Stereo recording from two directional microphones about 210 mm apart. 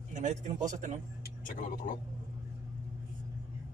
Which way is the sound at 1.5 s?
40° left (ahead or behind).